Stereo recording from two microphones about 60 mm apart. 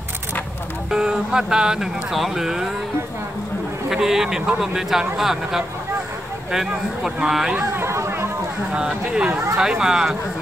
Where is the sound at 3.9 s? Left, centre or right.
Centre.